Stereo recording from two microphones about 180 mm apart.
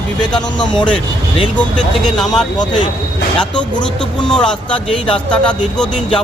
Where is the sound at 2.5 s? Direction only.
25° left (ahead or behind).